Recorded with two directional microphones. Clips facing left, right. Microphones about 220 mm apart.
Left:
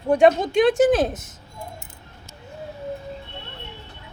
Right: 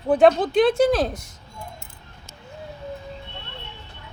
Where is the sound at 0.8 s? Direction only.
20° left (ahead or behind).